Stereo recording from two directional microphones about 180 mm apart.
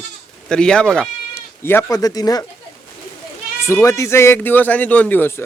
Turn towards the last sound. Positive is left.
turn(degrees=10)  # may be behind; listen again after turning